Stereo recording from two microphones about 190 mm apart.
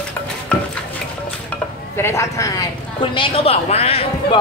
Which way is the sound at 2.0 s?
15° left (ahead or behind).